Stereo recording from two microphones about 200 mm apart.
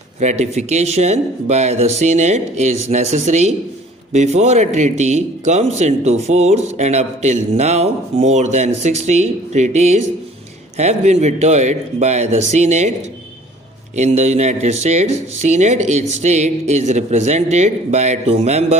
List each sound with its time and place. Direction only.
0.2 s a man's voice: 35° right (ahead or behind)
13.9 s a man's voice: 35° right (ahead or behind)